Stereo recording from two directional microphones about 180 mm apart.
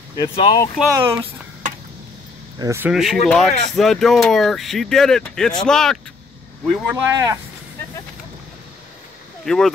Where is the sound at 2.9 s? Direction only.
5° right (ahead or behind).